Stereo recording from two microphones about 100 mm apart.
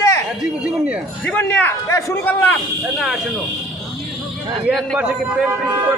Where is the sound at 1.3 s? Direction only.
15° left (ahead or behind).